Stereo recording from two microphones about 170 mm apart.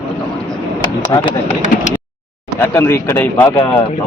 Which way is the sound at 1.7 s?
45° left (ahead or behind).